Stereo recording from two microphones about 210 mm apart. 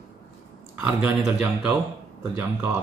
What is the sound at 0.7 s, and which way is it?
Speech, 10° right (ahead or behind).